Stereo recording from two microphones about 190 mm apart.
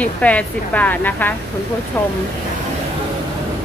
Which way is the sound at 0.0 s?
5° left (ahead or behind).